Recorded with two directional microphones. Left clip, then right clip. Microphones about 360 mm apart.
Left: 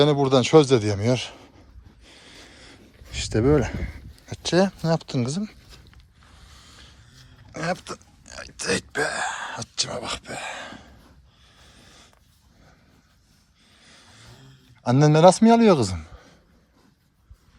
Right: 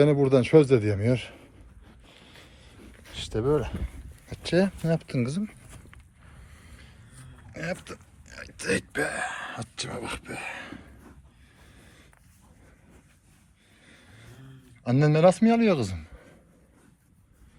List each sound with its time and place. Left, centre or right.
0.0 s a man's voice: centre
2.0 s a sound: centre
3.2 s speech: left
4.3 s a man's voice: centre
6.5 s vehicle: centre
7.5 s speech: centre
11.6 s a sound: centre
13.8 s vehicle: centre
14.8 s a man's voice: centre